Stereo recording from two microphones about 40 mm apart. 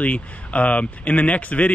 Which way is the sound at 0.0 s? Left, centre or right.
Left.